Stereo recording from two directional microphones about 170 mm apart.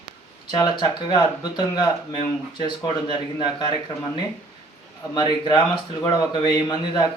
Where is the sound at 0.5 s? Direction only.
25° left (ahead or behind).